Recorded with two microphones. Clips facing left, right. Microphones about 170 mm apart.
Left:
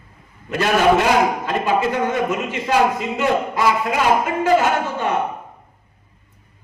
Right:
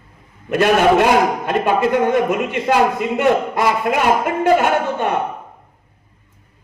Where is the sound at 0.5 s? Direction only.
55° right (ahead or behind).